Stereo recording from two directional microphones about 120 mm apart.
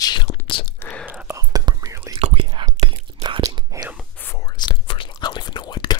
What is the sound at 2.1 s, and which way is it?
Whispering, 55° right (ahead or behind).